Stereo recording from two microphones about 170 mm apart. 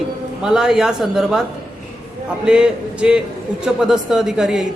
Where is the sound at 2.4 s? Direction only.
5° right (ahead or behind).